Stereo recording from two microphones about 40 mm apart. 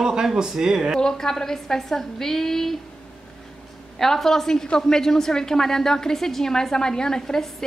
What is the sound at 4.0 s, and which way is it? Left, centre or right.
A woman's voice, centre.